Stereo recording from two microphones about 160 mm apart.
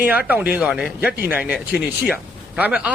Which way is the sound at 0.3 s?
10° right (ahead or behind).